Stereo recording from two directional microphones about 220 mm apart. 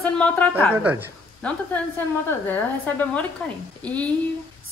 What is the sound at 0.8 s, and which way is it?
Speech, 5° right (ahead or behind).